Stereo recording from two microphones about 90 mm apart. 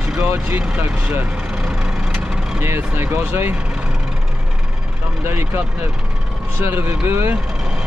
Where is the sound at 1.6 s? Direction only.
5° right (ahead or behind).